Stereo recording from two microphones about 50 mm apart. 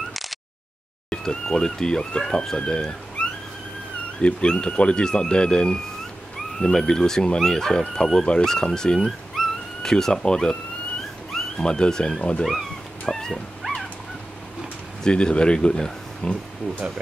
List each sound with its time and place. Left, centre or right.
0.1 s a sound: centre
1.1 s speech: centre
4.2 s speech: left
13.0 s dog: centre
13.3 s dog: centre
15.0 s speech: centre